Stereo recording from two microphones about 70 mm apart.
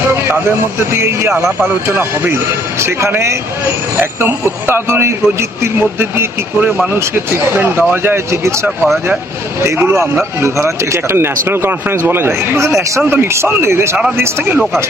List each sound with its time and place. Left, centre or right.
0.1 s speech: right
9.9 s a man's voice: centre
10.9 s speech: right